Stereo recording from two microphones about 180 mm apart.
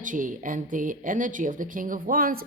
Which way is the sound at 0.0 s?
45° right (ahead or behind).